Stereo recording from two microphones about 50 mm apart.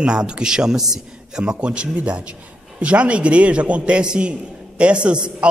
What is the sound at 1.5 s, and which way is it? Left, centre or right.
A man's voice, right.